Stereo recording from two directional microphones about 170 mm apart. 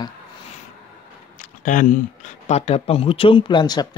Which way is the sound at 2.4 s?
40° left (ahead or behind).